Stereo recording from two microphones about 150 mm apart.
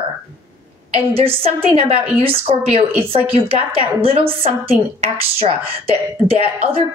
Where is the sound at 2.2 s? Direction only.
40° right (ahead or behind).